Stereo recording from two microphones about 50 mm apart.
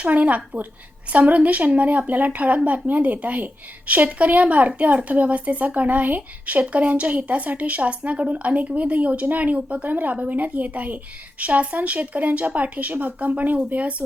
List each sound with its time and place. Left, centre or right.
0.0 s a woman's voice: right